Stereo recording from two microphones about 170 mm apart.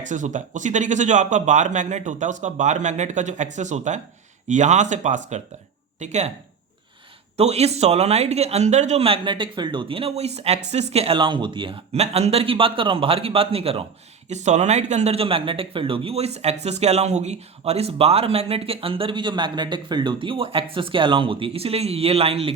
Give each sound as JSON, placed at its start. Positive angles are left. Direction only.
{"t": 0.0, "sound": "speech", "side_deg": -45}
{"t": 7.3, "sound": "speech", "side_deg": -40}